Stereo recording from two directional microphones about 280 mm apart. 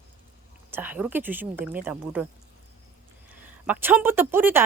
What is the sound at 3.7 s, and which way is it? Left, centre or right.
Speech, centre.